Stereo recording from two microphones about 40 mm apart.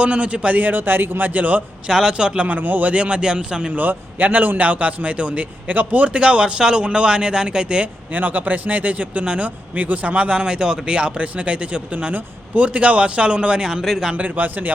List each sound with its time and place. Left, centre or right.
0.0 s a man's voice: right
0.6 s speech: right
1.3 s a man's voice: right
1.9 s speech: centre
2.4 s speech: right
2.9 s speech: right
3.7 s a man's voice: right
8.1 s a man's voice: right
9.7 s a man's voice: right
13.7 s speech: centre
14.1 s a man's voice: right
14.3 s speech: right